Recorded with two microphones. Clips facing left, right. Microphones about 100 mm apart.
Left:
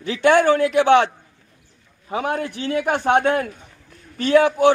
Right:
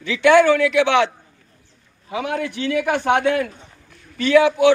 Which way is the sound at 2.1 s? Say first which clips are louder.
Left 1 dB; 40° left (ahead or behind).